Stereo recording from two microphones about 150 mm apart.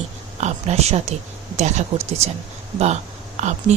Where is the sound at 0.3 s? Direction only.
50° right (ahead or behind).